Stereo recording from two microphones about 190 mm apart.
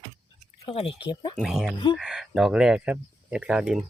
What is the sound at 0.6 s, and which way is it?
Speech, 30° left (ahead or behind).